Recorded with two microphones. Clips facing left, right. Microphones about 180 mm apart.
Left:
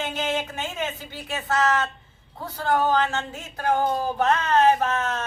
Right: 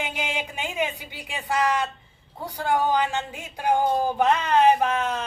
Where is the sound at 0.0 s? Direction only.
15° right (ahead or behind).